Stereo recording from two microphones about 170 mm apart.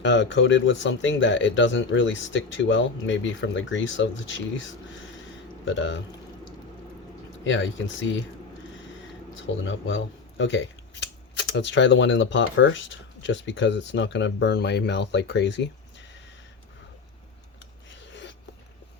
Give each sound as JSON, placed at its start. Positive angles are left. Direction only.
{"t": 0.0, "sound": "speech", "side_deg": 90}
{"t": 7.4, "sound": "speech", "side_deg": 90}
{"t": 9.3, "sound": "speech", "side_deg": 90}
{"t": 18.0, "sound": "a sound", "side_deg": 90}